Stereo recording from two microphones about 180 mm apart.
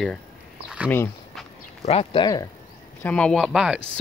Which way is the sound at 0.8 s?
10° left (ahead or behind).